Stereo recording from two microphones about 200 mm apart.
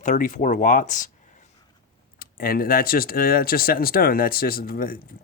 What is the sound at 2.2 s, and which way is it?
Speech, 45° left (ahead or behind).